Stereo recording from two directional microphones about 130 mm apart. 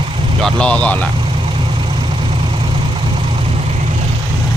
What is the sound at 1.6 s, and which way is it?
Vehicle, 40° right (ahead or behind).